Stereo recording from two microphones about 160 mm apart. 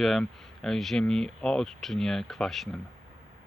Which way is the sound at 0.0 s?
Centre (ahead or behind).